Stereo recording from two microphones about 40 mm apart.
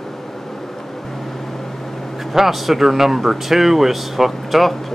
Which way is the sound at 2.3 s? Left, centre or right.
Centre.